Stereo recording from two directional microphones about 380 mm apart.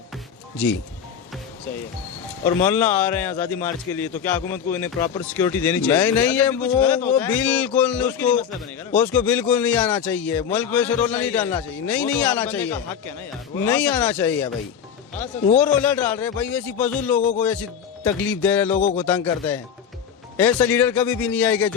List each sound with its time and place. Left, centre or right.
0.5 s speech: centre
2.6 s a man's voice: centre
15.5 s a man's voice: centre
17.2 s music: centre
17.4 s a man's voice: centre